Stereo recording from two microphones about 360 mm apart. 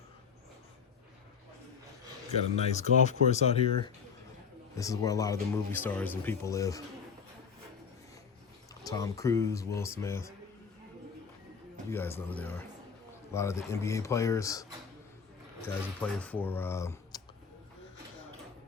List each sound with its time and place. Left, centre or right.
2.6 s speech: centre
8.8 s speech: centre
11.9 s speech: centre